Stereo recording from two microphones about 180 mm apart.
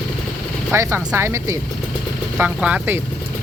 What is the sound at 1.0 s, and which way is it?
Speech, 5° right (ahead or behind).